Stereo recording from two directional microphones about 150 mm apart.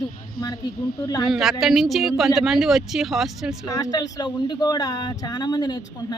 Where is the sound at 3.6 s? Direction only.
25° left (ahead or behind).